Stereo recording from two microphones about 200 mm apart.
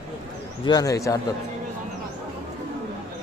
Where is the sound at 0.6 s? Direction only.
20° left (ahead or behind).